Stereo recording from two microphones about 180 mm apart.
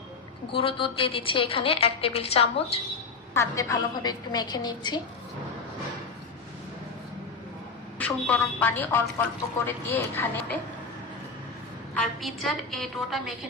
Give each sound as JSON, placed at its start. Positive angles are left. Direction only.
{"t": 0.5, "sound": "a woman's voice", "side_deg": 30}
{"t": 3.3, "sound": "a woman's voice", "side_deg": 15}
{"t": 7.9, "sound": "a woman's voice", "side_deg": 10}
{"t": 11.9, "sound": "a woman's voice", "side_deg": 0}